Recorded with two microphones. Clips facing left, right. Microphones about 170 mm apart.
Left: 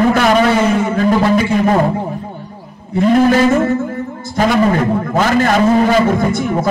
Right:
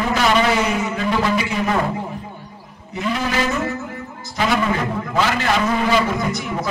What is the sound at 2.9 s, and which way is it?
A man's voice, 50° left (ahead or behind).